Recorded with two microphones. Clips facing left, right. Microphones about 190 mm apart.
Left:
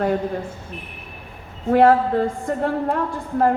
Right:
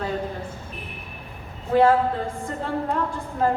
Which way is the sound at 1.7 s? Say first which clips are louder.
Left 3 dB; 60° left (ahead or behind).